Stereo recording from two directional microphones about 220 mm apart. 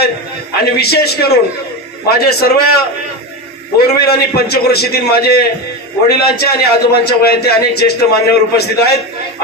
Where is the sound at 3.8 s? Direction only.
45° left (ahead or behind).